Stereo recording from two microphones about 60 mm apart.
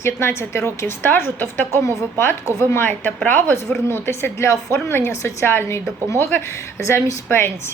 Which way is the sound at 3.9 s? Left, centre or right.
Left.